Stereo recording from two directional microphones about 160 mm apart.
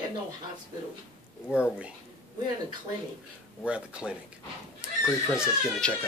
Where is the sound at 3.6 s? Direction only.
5° right (ahead or behind).